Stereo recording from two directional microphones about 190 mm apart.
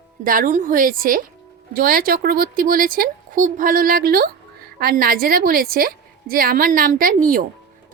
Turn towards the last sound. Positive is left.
turn(degrees=-45)  # may be behind; listen again after turning